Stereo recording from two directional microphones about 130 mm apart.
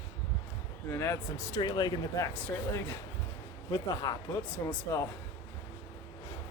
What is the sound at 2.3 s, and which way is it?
Speech, 10° left (ahead or behind).